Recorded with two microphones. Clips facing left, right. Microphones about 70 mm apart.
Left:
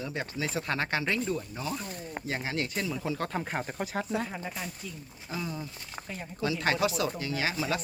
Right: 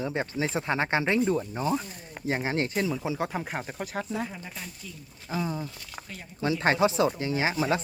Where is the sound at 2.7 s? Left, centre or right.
Centre.